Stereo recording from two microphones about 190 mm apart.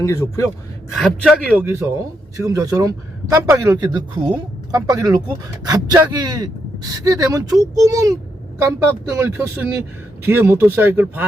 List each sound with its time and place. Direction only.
0.0 s a man's voice: 15° left (ahead or behind)
0.9 s a man's voice: centre (ahead or behind)
1.6 s a man's voice: 15° right (ahead or behind)